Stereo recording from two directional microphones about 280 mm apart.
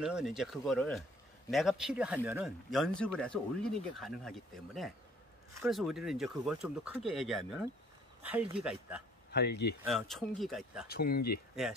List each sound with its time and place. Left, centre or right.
0.0 s speech: centre
9.3 s speech: left
9.8 s speech: centre
10.9 s speech: left